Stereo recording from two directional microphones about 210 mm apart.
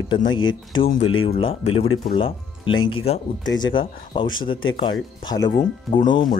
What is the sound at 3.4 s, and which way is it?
Speech, 60° left (ahead or behind).